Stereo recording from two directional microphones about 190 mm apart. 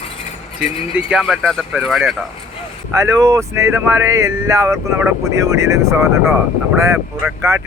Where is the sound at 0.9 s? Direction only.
5° right (ahead or behind).